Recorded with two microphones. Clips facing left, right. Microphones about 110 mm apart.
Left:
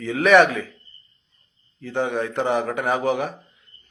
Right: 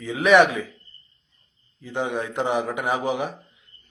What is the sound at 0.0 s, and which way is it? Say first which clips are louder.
Speech: left 1 dB; 15° right (ahead or behind).